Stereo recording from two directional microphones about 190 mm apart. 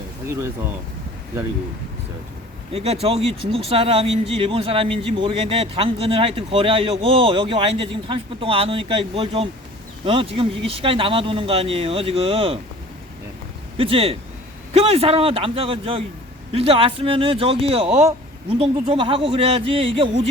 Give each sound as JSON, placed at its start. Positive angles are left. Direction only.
{"t": 2.7, "sound": "speech", "side_deg": -35}
{"t": 13.7, "sound": "a man's voice", "side_deg": -30}